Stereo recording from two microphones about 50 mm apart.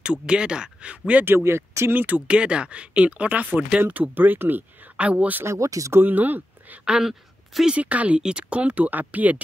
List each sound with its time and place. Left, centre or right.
0.0 s speech: centre
1.2 s speech: right
2.0 s speech: right
4.9 s speech: right
5.4 s speech: right
5.9 s speech: right
6.8 s speech: centre
7.7 s speech: right